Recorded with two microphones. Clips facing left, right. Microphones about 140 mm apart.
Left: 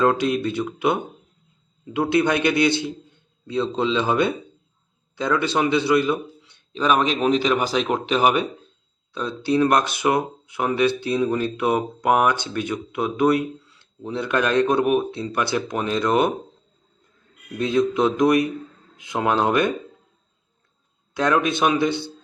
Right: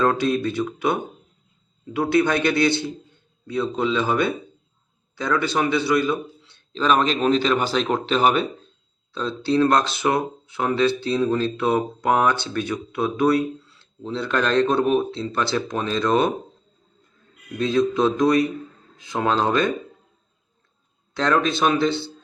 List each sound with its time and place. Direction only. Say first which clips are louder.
0.2 s a man's voice: even; 20° left (ahead or behind)
17.6 s a man's voice: even; 20° left (ahead or behind)
21.1 s speech: even; 10° left (ahead or behind)